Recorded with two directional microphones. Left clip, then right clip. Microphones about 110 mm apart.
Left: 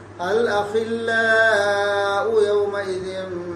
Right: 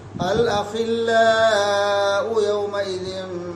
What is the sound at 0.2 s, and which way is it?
Chant, 20° right (ahead or behind).